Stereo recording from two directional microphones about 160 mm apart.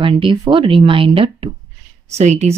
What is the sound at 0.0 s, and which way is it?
A woman's voice, 30° right (ahead or behind).